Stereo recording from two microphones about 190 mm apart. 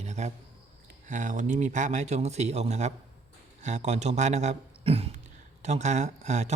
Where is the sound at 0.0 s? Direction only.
35° right (ahead or behind).